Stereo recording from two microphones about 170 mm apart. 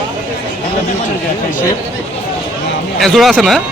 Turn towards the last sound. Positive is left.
turn(degrees=0)  # may be behind; listen again after turning